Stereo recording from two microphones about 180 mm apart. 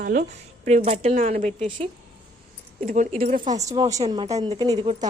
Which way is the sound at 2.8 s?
45° right (ahead or behind).